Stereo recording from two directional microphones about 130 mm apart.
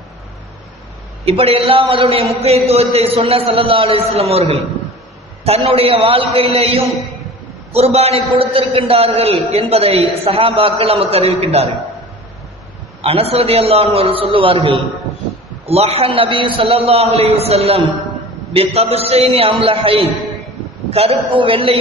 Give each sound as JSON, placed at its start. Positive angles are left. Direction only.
{"t": 1.2, "sound": "a man's voice", "side_deg": -50}
{"t": 13.0, "sound": "a man's voice", "side_deg": -50}